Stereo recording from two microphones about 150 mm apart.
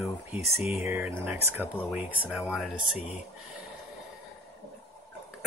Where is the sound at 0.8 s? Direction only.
10° right (ahead or behind).